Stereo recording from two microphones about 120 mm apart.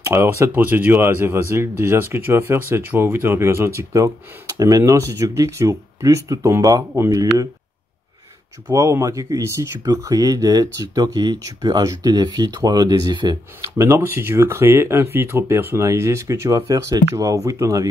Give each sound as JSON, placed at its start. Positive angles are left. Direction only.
{"t": 0.0, "sound": "speech", "side_deg": -20}
{"t": 8.6, "sound": "speech", "side_deg": -25}